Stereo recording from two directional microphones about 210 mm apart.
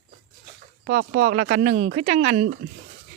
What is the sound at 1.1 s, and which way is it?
Speech, 40° right (ahead or behind).